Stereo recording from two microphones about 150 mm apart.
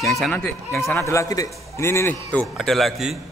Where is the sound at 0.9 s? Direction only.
20° left (ahead or behind).